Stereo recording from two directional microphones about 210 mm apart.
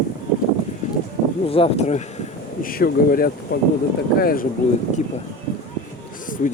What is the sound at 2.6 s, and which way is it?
Speech, 45° left (ahead or behind).